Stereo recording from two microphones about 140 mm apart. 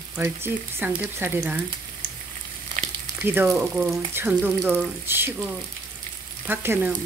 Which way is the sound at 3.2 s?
15° right (ahead or behind).